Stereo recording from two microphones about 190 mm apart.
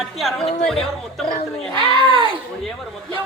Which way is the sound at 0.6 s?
5° left (ahead or behind).